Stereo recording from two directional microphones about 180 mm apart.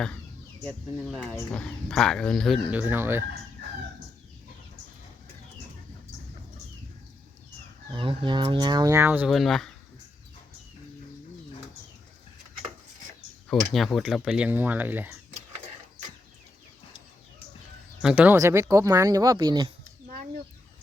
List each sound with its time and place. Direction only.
0.6 s speech: centre (ahead or behind)
2.7 s speech: 10° right (ahead or behind)
7.9 s speech: 30° right (ahead or behind); by 9.7 s centre (ahead or behind)
13.5 s speech: centre (ahead or behind)
18.0 s speech: 10° right (ahead or behind)